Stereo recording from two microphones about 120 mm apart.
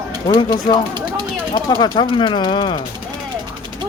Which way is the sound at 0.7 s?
35° left (ahead or behind).